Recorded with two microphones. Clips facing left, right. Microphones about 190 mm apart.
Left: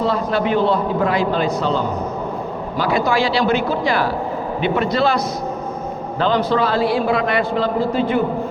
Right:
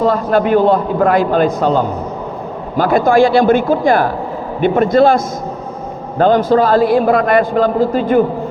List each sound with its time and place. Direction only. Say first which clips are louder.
0.0 s a man's voice: right 6 dB; 45° right (ahead or behind)
2.7 s a man's voice: right 7 dB; 50° right (ahead or behind)